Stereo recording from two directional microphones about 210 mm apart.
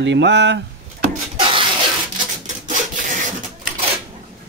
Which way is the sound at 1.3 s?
25° right (ahead or behind).